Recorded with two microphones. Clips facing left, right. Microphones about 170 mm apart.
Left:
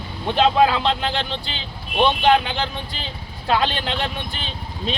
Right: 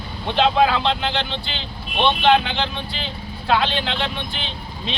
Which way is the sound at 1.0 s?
40° left (ahead or behind).